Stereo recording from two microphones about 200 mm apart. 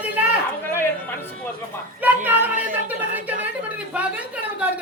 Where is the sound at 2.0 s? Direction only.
10° right (ahead or behind).